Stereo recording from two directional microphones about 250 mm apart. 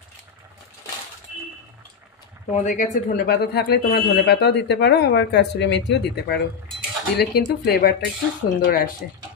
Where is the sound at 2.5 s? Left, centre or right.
Left.